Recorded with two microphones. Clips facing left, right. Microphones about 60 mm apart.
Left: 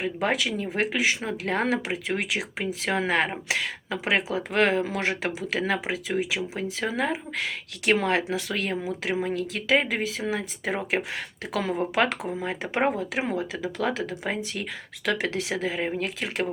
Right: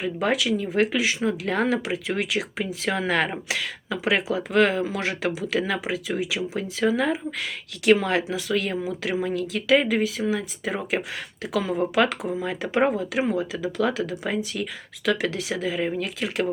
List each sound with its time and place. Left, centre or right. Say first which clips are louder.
0.0 s speech: right 2 dB; left